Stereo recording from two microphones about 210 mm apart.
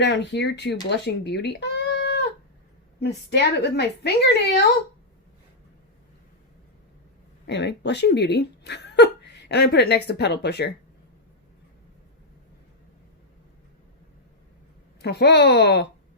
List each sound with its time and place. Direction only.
0.0 s a woman's voice: 55° left (ahead or behind)
7.4 s speech: 55° left (ahead or behind)
15.0 s a woman's voice: 50° left (ahead or behind)